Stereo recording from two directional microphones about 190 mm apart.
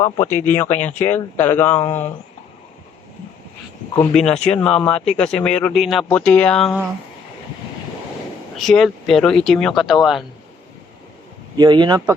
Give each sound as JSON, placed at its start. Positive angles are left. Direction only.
{"t": 0.0, "sound": "speech", "side_deg": 15}
{"t": 4.1, "sound": "speech", "side_deg": 5}
{"t": 8.6, "sound": "speech", "side_deg": 0}
{"t": 11.5, "sound": "speech", "side_deg": -25}